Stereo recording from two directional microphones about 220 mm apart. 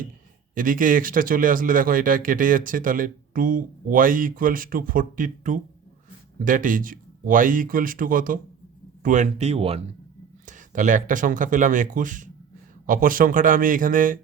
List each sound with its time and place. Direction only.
0.5 s speech: 40° right (ahead or behind)